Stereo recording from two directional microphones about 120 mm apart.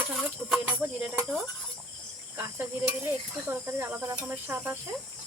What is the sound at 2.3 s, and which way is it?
Cricket, 20° right (ahead or behind).